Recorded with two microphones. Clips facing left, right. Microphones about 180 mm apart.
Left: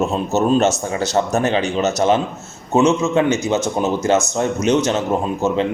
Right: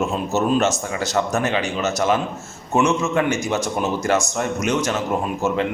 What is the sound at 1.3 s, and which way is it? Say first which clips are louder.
A man's voice: left 4 dB; 35° left (ahead or behind).